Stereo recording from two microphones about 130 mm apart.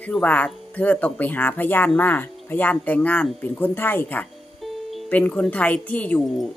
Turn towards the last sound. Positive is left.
turn(degrees=0)  # may be behind; listen again after turning